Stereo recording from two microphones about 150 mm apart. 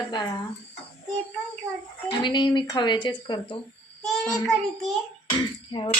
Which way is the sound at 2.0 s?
30° left (ahead or behind).